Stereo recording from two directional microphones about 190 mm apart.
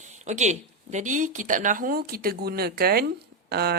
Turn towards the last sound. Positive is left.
turn(degrees=-55)  # may be behind; listen again after turning